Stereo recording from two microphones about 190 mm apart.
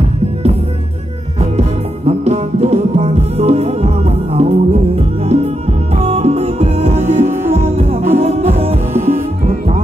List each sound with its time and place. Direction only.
1.4 s music: 35° right (ahead or behind)
8.9 s music: 10° right (ahead or behind)